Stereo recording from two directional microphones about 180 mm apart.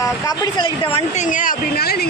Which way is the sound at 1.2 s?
50° left (ahead or behind).